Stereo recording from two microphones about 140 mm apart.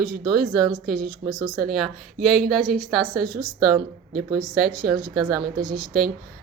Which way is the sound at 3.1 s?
90° right.